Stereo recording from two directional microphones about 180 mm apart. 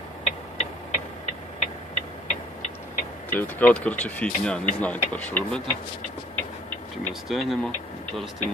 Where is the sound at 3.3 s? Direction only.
10° left (ahead or behind).